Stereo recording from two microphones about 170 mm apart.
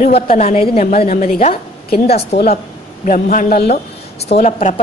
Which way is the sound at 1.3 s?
35° left (ahead or behind).